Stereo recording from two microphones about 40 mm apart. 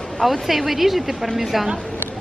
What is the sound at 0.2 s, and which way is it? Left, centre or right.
A woman's voice, centre.